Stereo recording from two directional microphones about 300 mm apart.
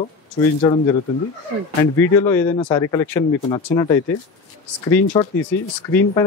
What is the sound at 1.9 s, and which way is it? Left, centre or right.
Speech, centre.